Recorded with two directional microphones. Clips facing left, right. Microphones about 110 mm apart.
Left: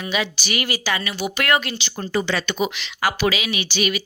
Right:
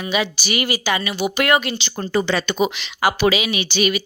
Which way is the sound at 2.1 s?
40° right (ahead or behind).